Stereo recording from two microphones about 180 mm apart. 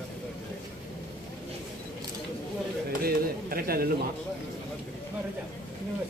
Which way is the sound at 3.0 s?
55° right (ahead or behind).